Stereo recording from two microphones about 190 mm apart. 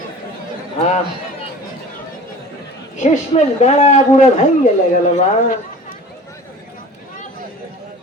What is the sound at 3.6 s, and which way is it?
Speech, 35° left (ahead or behind).